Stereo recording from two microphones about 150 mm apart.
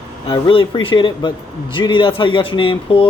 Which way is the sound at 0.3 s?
35° left (ahead or behind).